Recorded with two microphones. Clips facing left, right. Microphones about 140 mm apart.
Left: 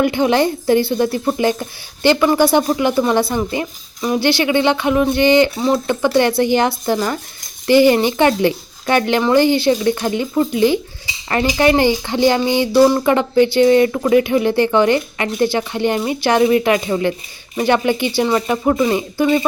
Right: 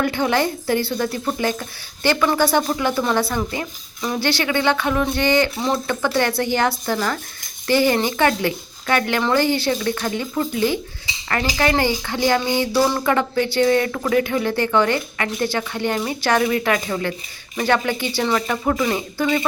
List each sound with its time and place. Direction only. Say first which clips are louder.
0.0 s a woman's voice: left 5 dB; 20° left (ahead or behind)